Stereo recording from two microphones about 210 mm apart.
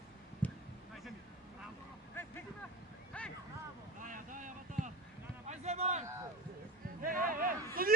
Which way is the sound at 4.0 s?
40° right (ahead or behind).